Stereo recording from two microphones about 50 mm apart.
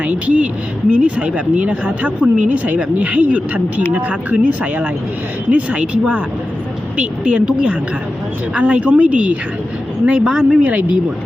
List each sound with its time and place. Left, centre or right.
0.0 s speech: right
10.1 s speech: centre
10.6 s speech: right